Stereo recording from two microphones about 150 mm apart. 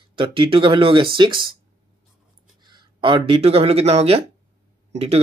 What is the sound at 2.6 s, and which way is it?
Speech, 30° right (ahead or behind).